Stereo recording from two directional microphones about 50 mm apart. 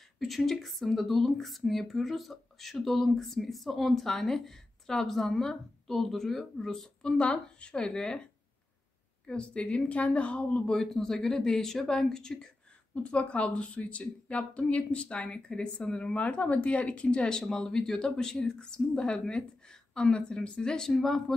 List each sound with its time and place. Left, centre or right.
0.2 s speech: centre
9.3 s a woman's voice: centre
10.8 s speech: centre
12.9 s a woman's voice: left; by 21.2 s centre